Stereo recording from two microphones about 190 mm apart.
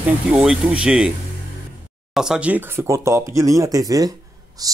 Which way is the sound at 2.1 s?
5° right (ahead or behind).